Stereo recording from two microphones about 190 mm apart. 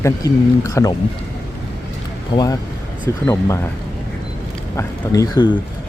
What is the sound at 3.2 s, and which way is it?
Speech, 15° left (ahead or behind).